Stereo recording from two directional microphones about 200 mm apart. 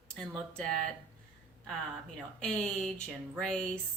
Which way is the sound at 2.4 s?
5° left (ahead or behind).